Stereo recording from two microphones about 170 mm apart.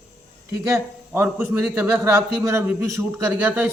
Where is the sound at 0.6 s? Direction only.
15° right (ahead or behind).